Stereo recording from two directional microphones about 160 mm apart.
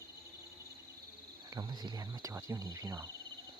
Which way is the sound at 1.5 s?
25° right (ahead or behind).